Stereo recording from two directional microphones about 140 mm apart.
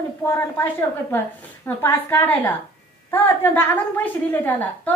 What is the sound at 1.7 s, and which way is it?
Speech, 15° left (ahead or behind).